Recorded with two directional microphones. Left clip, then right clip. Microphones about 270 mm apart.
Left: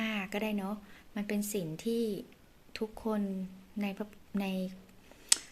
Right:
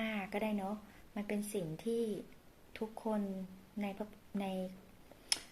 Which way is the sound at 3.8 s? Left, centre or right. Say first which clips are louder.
Left 4 dB; left.